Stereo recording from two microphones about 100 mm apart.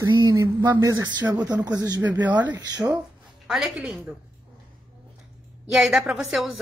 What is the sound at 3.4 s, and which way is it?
Speech, 5° right (ahead or behind).